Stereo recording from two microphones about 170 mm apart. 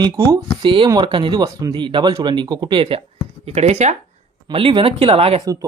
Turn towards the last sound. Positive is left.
turn(degrees=-20)  # may be behind; listen again after turning